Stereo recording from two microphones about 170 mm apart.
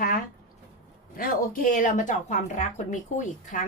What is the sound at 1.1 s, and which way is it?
Speech, 55° left (ahead or behind).